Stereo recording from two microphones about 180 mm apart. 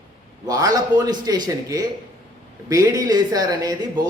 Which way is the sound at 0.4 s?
20° right (ahead or behind).